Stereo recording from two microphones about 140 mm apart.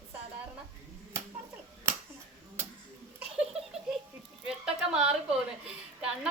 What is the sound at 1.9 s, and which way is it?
Finger snapping, 20° right (ahead or behind).